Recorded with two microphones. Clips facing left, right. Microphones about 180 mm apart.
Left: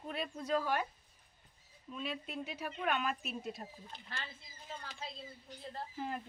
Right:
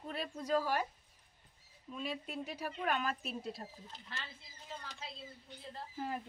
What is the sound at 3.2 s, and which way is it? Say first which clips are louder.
Speech: even; 30° right (ahead or behind).